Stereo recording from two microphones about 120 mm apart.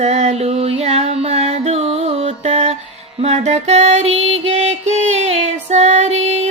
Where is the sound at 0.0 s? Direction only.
70° right (ahead or behind).